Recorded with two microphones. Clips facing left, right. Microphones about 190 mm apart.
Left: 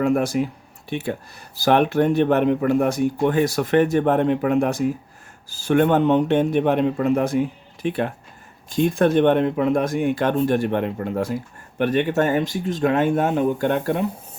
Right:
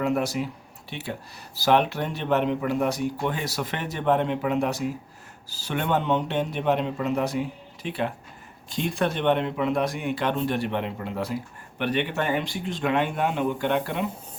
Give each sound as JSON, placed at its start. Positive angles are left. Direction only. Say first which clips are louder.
{"t": 0.0, "sound": "speech", "louder": "left 5 dB", "side_deg": 50}